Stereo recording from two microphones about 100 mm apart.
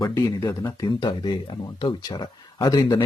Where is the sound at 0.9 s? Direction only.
45° left (ahead or behind).